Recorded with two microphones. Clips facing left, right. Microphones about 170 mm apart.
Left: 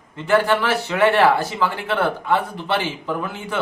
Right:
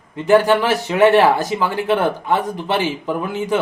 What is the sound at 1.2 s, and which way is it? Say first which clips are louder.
Speech: right 1 dB; 40° right (ahead or behind).